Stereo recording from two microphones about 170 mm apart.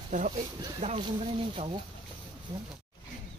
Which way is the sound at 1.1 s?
30° right (ahead or behind).